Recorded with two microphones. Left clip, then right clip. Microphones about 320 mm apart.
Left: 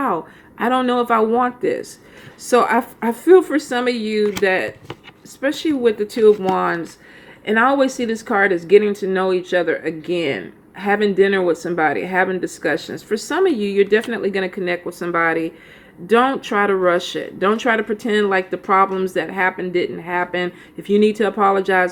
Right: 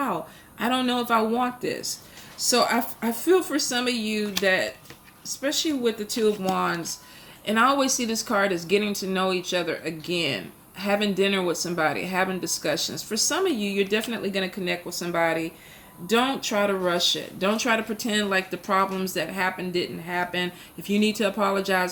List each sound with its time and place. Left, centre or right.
0.6 s speech: centre
12.7 s speech: centre
13.2 s speech: centre